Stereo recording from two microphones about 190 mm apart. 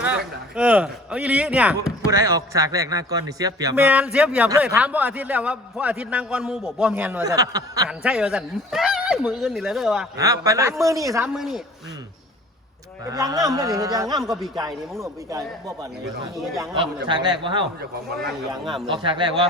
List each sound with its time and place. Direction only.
0.0 s a man's voice: 5° right (ahead or behind)
2.0 s speech: 20° right (ahead or behind)
7.9 s speech: 5° right (ahead or behind)
10.2 s speech: 20° right (ahead or behind)
11.3 s speech: centre (ahead or behind)
13.1 s a man's voice: 20° right (ahead or behind)
18.9 s a man's voice: 25° right (ahead or behind)